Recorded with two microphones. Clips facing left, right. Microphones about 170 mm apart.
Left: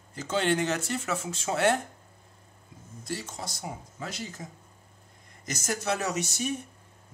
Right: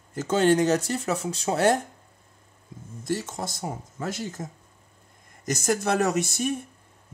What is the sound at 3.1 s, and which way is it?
Speech, 50° right (ahead or behind).